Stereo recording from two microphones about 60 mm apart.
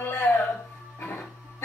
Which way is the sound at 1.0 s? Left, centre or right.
Left.